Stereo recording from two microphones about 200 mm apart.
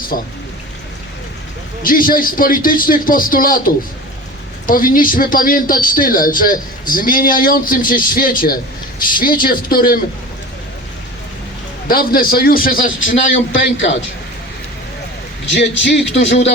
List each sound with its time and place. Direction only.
0.1 s speech: 45° left (ahead or behind)
1.8 s speech: 45° left (ahead or behind)
11.9 s speech: 45° left (ahead or behind)
13.3 s a man's voice: 70° left (ahead or behind)
15.5 s a man's voice: 60° left (ahead or behind)